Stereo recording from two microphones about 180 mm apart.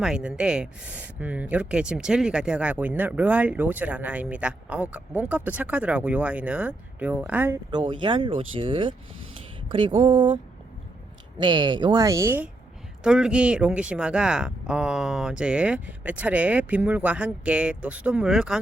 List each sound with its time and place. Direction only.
0.0 s speech: 5° right (ahead or behind)
7.7 s speech: 25° right (ahead or behind)
11.4 s speech: 25° right (ahead or behind); by 18.6 s 5° right (ahead or behind)